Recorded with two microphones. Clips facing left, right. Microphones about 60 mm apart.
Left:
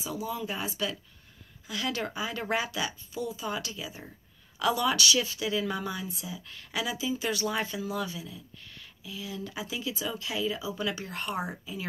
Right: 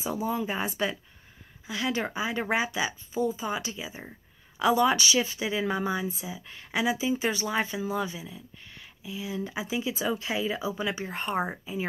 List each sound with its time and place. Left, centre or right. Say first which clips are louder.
0.0 s speech: right 5 dB; right
1.7 s speech: right 3 dB; centre
10.8 s speech: right 2 dB; centre
11.1 s speech: right 4 dB; right